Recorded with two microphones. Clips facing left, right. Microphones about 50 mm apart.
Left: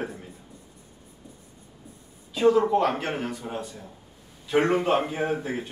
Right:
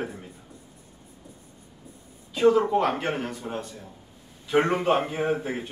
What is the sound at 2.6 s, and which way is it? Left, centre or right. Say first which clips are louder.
Speech: left 1 dB; centre.